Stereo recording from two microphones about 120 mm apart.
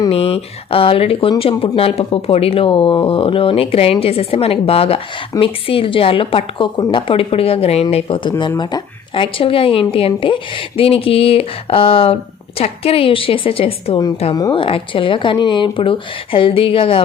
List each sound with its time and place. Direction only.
0.1 s speech: 50° left (ahead or behind)